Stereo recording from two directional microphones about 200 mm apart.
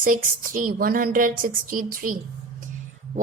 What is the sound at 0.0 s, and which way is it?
Speech, 40° right (ahead or behind).